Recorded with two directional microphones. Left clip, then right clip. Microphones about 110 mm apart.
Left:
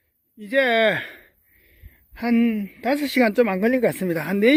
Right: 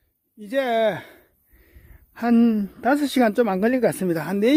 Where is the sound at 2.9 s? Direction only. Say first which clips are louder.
Right 1 dB; 25° right (ahead or behind).